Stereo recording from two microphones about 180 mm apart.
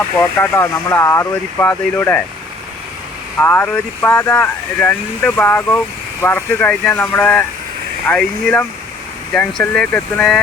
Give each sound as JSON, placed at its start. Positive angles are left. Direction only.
{"t": 0.2, "sound": "speech", "side_deg": 10}
{"t": 3.4, "sound": "speech", "side_deg": 10}